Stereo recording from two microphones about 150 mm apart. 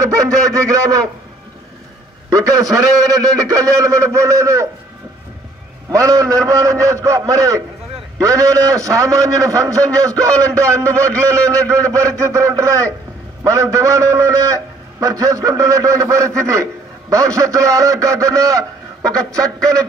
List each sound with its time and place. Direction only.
0.0 s a man's voice: 25° right (ahead or behind)
2.3 s a man's voice: 25° right (ahead or behind)
5.9 s a man's voice: 20° right (ahead or behind)
11.6 s a man's voice: 5° left (ahead or behind)
12.0 s a man's voice: 20° right (ahead or behind)